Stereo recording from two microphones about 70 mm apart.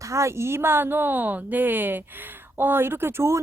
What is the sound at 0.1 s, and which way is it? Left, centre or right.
A woman's voice, right.